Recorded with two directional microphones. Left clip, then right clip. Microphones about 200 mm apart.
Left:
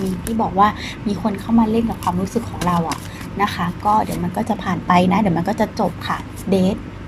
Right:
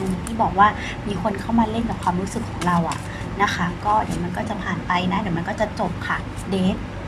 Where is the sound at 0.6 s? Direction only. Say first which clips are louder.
Left 1 dB; 20° left (ahead or behind).